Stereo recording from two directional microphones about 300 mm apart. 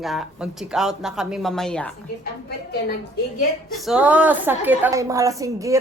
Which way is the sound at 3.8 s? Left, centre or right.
Centre.